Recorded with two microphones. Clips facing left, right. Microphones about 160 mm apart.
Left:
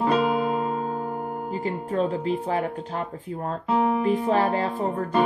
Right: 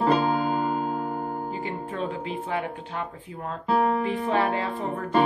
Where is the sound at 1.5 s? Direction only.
40° left (ahead or behind).